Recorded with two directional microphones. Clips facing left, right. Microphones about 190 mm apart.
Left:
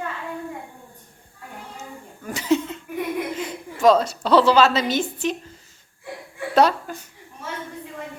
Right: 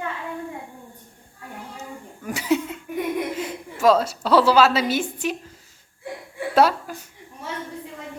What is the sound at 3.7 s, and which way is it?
Speech, 5° right (ahead or behind).